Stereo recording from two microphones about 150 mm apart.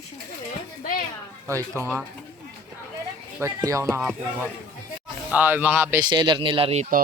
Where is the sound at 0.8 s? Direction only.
70° left (ahead or behind).